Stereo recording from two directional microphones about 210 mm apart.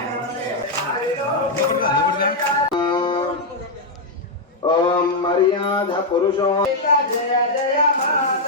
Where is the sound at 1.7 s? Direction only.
45° left (ahead or behind).